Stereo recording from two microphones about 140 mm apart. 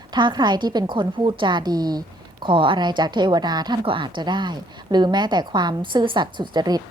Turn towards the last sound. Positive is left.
turn(degrees=-30)  # may be behind; listen again after turning